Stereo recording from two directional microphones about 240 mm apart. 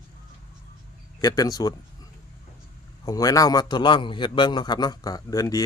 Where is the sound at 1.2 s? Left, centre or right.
Centre.